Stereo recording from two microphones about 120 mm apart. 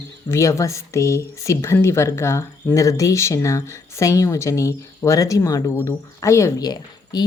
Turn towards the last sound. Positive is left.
turn(degrees=35)  # may be behind; listen again after turning